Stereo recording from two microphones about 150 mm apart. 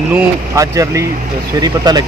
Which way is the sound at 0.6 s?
20° right (ahead or behind).